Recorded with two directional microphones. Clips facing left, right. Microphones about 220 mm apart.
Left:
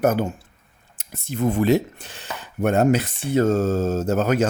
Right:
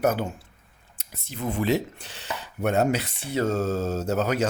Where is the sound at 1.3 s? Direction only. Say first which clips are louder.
Left 6 dB; 45° left (ahead or behind).